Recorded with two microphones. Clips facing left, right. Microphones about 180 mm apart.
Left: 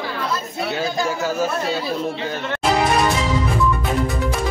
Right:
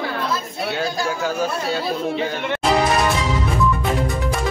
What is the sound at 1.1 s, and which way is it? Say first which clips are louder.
Speech: left 1 dB; 5° left (ahead or behind).